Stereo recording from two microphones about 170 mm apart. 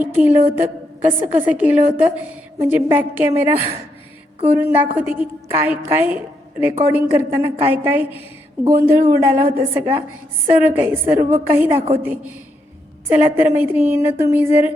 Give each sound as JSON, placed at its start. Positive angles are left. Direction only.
{"t": 0.0, "sound": "a woman's voice", "side_deg": -10}